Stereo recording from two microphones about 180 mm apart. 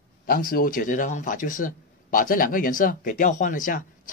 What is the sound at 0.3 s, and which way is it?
Speech, 55° left (ahead or behind).